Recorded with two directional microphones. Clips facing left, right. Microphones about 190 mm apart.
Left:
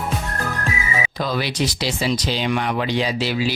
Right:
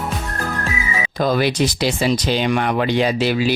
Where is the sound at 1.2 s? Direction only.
50° right (ahead or behind).